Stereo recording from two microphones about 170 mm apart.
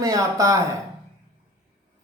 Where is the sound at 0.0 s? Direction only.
20° right (ahead or behind).